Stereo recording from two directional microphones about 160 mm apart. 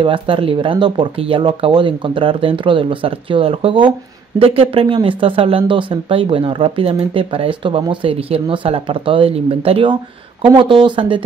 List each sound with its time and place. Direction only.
0.0 s speech: 35° right (ahead or behind)